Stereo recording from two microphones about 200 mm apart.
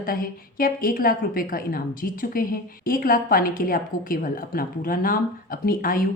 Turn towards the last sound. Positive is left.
turn(degrees=45)  # may be behind; listen again after turning